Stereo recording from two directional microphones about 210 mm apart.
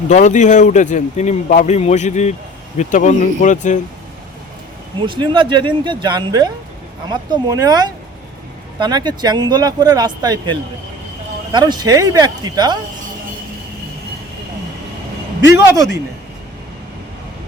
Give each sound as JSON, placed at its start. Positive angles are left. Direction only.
{"t": 0.1, "sound": "a man's voice", "side_deg": 35}
{"t": 4.9, "sound": "speech", "side_deg": -25}